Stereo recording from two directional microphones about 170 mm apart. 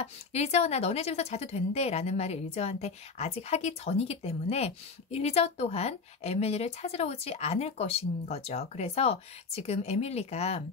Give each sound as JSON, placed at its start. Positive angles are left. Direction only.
{"t": 0.0, "sound": "speech", "side_deg": 40}